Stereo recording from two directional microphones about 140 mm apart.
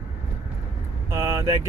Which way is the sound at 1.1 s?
20° right (ahead or behind).